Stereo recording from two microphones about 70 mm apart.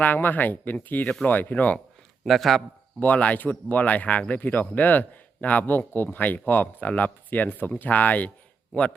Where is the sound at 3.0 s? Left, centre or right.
Left.